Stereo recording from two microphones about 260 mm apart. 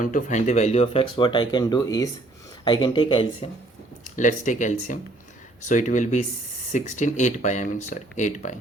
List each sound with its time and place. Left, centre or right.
0.0 s speech: left
4.0 s speech: left